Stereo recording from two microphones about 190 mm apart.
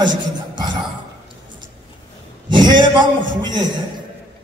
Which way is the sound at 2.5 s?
25° right (ahead or behind).